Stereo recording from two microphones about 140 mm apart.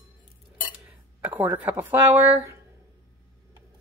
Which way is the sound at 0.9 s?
10° right (ahead or behind).